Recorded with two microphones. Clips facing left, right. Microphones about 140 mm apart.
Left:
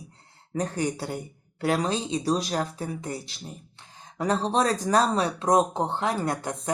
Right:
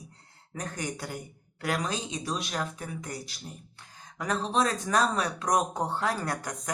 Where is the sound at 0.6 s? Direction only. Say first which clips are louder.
Left 8 dB; 30° left (ahead or behind).